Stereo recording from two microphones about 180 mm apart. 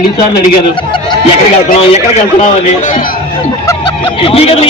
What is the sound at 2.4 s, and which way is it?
Speech, 45° left (ahead or behind).